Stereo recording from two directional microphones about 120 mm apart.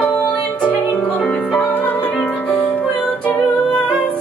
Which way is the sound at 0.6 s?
10° left (ahead or behind).